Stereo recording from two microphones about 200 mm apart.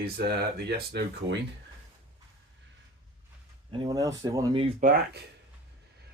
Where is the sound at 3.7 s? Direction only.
20° right (ahead or behind).